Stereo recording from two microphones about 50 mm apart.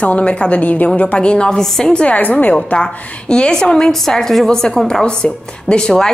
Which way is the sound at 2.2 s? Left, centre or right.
Left.